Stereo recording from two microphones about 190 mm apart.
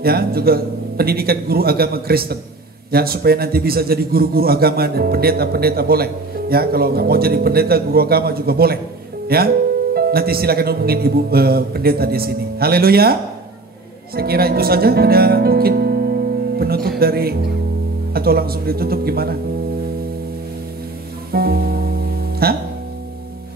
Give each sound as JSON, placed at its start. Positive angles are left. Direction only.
{"t": 0.0, "sound": "a man's voice", "side_deg": -55}
{"t": 21.3, "sound": "music", "side_deg": -55}